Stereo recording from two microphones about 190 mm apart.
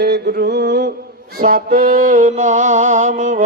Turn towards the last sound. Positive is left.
turn(degrees=-40)  # may be behind; listen again after turning